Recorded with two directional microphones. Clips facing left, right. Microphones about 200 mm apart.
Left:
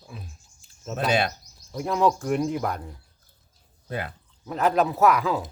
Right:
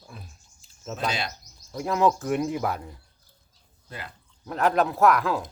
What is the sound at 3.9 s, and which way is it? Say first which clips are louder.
Speech: left 9 dB; 60° left (ahead or behind).